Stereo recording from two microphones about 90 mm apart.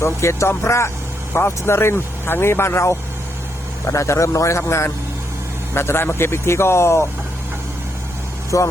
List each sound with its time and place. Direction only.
0.0 s a man's voice: 30° left (ahead or behind)
8.5 s a man's voice: 40° left (ahead or behind)